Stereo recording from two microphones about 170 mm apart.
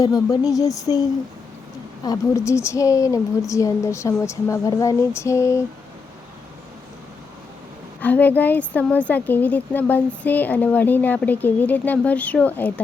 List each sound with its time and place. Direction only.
0.0 s speech: 20° left (ahead or behind)
2.0 s speech: 15° left (ahead or behind)
8.0 s speech: 10° left (ahead or behind)